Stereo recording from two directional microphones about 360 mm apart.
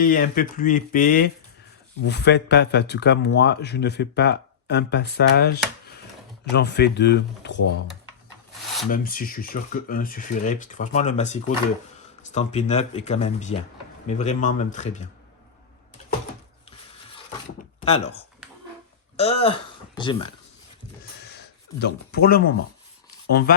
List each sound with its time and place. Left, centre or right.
0.0 s speech: left
8.9 s speech: left
17.7 s speech: centre
21.8 s speech: left